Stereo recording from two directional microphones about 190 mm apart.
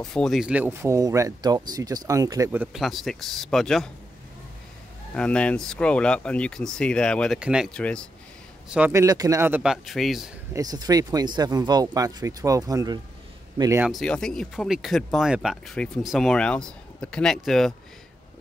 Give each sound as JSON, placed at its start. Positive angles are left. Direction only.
{"t": 0.0, "sound": "speech", "side_deg": 5}
{"t": 5.1, "sound": "speech", "side_deg": 5}
{"t": 8.6, "sound": "speech", "side_deg": -5}
{"t": 10.5, "sound": "speech", "side_deg": -20}
{"t": 13.8, "sound": "speech", "side_deg": 0}